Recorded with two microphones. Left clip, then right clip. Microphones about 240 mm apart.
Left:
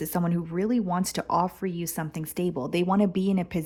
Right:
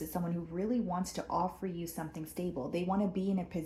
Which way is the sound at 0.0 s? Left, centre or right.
Left.